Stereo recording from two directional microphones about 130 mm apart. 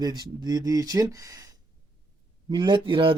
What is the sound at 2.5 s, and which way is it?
Speech, 35° right (ahead or behind).